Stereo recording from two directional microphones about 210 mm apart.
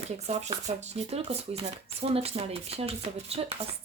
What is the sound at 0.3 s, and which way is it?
Speech, 30° right (ahead or behind).